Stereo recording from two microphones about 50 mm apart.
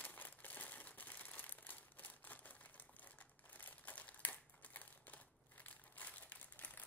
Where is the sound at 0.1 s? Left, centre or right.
Left.